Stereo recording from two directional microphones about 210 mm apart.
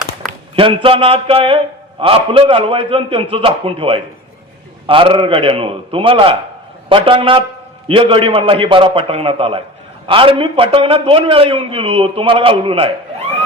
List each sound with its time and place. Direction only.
0.5 s a man's voice: 25° right (ahead or behind)